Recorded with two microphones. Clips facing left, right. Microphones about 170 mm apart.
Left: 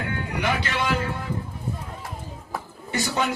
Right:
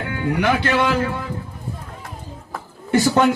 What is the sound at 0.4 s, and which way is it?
Speech, 60° right (ahead or behind).